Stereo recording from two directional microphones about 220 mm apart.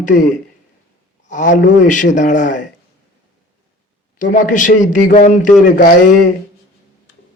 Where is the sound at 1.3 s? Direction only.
35° left (ahead or behind).